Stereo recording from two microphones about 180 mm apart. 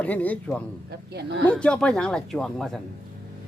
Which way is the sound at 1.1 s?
70° right (ahead or behind).